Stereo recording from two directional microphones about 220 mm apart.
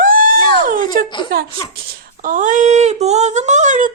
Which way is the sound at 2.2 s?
35° right (ahead or behind).